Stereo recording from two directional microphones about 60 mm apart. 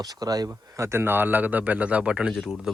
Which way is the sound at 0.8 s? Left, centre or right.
Right.